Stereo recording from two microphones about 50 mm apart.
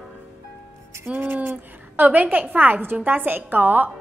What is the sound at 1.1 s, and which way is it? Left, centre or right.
A woman's voice, right.